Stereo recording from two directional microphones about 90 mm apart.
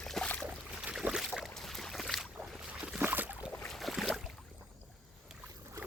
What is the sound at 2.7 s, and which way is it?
Boat, 10° right (ahead or behind).